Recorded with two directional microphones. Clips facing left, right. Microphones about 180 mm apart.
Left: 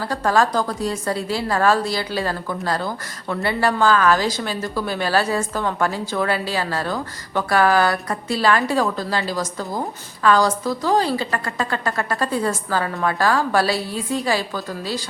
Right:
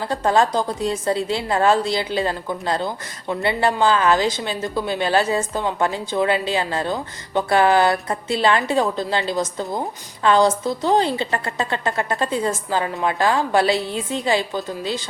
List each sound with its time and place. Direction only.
0.1 s a woman's voice: 25° right (ahead or behind)